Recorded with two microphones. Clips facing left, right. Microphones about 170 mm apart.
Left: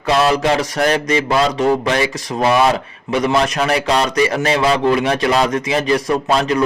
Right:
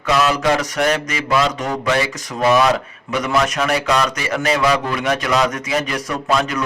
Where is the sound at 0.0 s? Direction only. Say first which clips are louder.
Left 2 dB; 30° left (ahead or behind).